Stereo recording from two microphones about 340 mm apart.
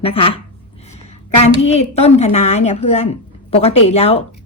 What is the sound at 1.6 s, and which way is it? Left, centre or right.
A woman's voice, centre.